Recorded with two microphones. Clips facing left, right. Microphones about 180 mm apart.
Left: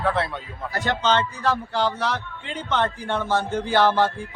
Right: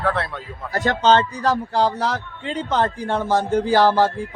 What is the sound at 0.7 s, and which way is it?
Speech, 40° right (ahead or behind).